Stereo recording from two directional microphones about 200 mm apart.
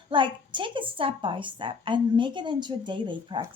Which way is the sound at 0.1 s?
25° right (ahead or behind).